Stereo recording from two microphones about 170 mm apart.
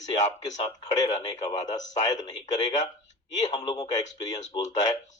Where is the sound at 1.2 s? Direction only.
25° left (ahead or behind).